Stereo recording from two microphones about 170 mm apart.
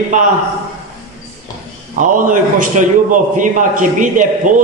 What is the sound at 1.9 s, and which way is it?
Speech, 50° right (ahead or behind).